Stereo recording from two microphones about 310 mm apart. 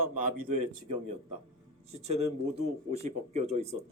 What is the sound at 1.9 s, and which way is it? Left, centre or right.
Speech, centre.